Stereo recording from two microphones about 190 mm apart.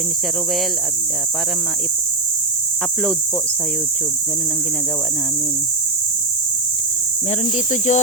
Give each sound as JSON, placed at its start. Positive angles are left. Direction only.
{"t": 7.3, "sound": "speech", "side_deg": 40}